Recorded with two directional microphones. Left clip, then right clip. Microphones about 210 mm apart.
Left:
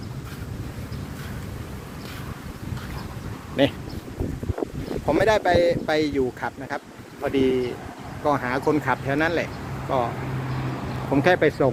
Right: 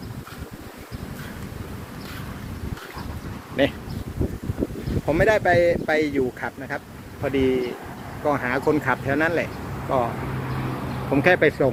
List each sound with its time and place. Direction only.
3.6 s speech: 25° left (ahead or behind)
5.0 s speech: 20° left (ahead or behind)
11.1 s speech: 5° left (ahead or behind)